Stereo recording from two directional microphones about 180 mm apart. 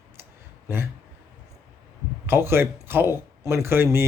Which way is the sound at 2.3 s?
15° right (ahead or behind).